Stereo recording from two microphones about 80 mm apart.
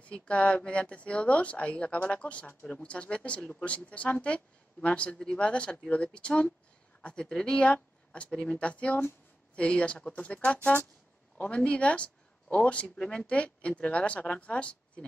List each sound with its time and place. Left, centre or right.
0.1 s speech: centre